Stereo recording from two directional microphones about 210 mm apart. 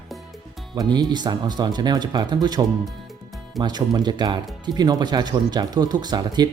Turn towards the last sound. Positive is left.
turn(degrees=-20)  # may be behind; listen again after turning